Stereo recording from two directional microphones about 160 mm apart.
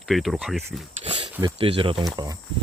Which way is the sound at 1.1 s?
30° right (ahead or behind).